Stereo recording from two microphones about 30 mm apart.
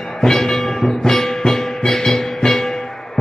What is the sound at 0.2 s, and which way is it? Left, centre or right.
Music, centre.